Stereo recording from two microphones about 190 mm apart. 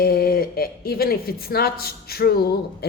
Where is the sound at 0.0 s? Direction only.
50° left (ahead or behind).